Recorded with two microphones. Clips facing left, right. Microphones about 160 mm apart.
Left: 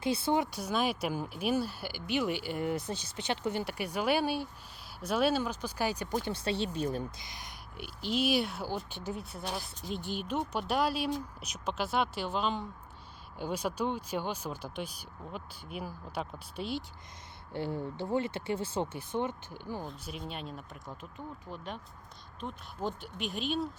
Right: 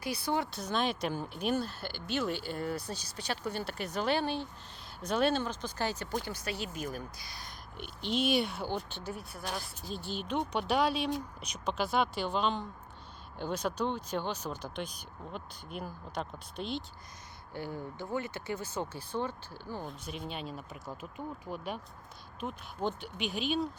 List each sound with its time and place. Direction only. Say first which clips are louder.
0.0 s speech: left 4 dB; 25° left (ahead or behind)
6.2 s speech: left 5 dB; 25° left (ahead or behind)
7.8 s speech: even; 5° left (ahead or behind)
17.5 s speech: left 4 dB; 25° left (ahead or behind)
20.1 s speech: right 1 dB; centre (ahead or behind)